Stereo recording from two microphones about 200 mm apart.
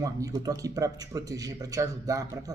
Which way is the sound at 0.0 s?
15° right (ahead or behind).